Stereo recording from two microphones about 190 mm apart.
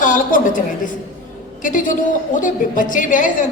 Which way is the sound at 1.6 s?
45° left (ahead or behind).